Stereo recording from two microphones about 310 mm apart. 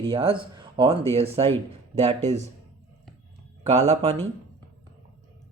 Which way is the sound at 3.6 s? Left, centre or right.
Centre.